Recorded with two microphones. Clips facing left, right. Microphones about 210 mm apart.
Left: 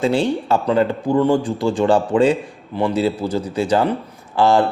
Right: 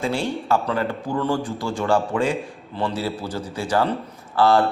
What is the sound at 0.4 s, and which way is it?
A man's voice, 20° left (ahead or behind).